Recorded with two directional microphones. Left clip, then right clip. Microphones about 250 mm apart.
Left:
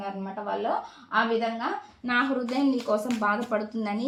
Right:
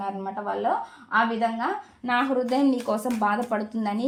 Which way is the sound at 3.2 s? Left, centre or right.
Right.